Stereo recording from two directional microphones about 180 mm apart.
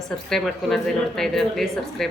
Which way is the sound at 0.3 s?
Centre (ahead or behind).